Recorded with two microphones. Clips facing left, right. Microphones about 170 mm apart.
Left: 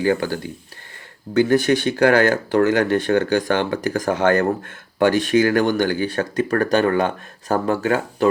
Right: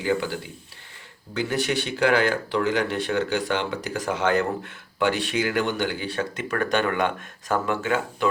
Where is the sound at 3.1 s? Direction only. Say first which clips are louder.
Left 6 dB; 60° left (ahead or behind).